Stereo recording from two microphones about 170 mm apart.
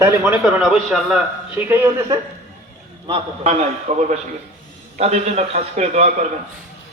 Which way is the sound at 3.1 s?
40° right (ahead or behind).